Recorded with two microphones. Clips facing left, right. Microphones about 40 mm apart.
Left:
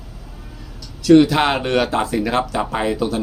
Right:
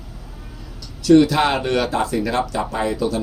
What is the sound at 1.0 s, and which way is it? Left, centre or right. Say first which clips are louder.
Speech: left 2 dB; left.